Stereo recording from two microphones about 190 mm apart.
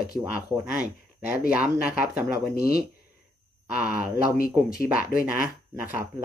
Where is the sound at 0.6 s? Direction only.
5° right (ahead or behind).